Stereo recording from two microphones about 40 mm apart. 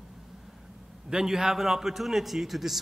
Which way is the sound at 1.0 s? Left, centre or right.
Centre.